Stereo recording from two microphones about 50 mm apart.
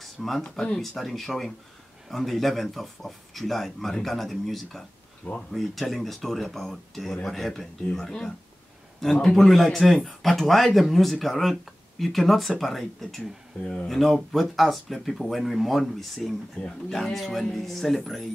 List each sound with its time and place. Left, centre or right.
0.0 s a sound: centre
0.4 s speech: centre
0.7 s speech: centre